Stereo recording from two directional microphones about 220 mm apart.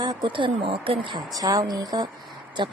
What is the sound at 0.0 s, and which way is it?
A woman's voice, 20° right (ahead or behind).